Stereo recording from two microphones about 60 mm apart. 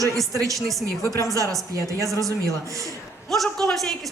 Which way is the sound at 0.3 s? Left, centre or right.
Right.